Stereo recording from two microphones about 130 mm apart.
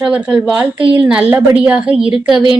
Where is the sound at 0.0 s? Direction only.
10° right (ahead or behind).